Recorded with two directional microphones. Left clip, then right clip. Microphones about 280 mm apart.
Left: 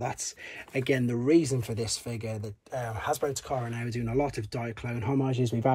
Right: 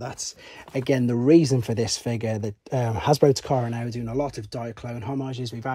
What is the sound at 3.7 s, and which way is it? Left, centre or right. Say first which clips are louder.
Speech: right 2 dB; centre.